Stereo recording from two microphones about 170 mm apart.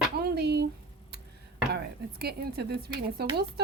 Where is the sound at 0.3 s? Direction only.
75° right (ahead or behind).